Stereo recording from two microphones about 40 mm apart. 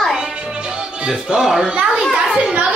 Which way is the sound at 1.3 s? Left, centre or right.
Centre.